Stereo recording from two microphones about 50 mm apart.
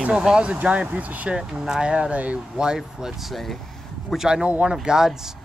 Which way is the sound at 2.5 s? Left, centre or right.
Centre.